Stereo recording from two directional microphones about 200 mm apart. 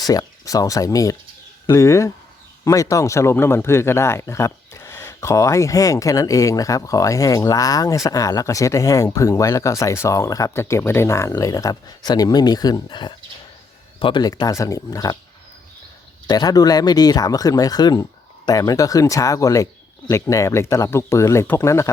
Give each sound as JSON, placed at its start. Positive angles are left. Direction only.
{"t": 0.0, "sound": "speech", "side_deg": 20}
{"t": 16.2, "sound": "speech", "side_deg": 20}